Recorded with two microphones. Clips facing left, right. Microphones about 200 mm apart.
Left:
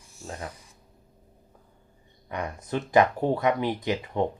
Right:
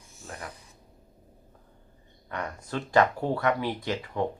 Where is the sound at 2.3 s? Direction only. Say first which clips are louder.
Left 3 dB; 15° left (ahead or behind).